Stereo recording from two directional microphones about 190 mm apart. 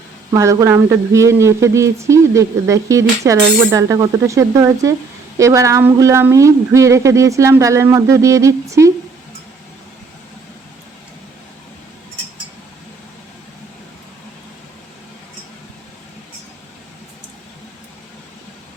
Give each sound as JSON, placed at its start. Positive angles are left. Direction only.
{"t": 0.3, "sound": "speech", "side_deg": -15}